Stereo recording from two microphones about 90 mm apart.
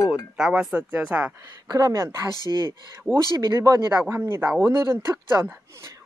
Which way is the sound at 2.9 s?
30° right (ahead or behind).